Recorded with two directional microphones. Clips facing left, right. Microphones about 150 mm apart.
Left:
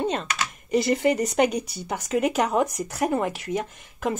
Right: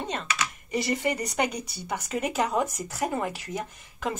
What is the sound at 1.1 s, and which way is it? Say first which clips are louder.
Speech: left 6 dB; 15° left (ahead or behind).